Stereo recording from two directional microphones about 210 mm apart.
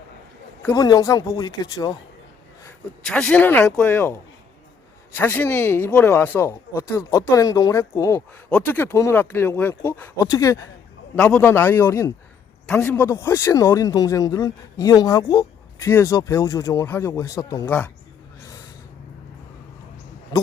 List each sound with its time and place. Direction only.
0.6 s speech: 15° left (ahead or behind)
3.0 s speech: 5° left (ahead or behind)